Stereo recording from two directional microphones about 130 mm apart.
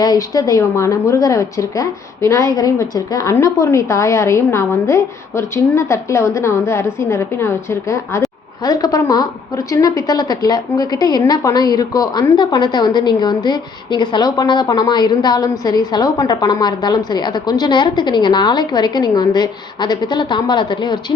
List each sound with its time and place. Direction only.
0.0 s a woman's voice: 30° left (ahead or behind)